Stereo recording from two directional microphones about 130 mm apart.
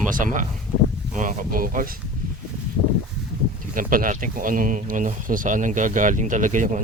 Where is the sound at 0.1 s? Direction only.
90° right.